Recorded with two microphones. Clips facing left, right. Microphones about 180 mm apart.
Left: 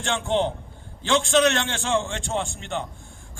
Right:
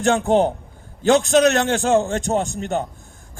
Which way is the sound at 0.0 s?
40° right (ahead or behind).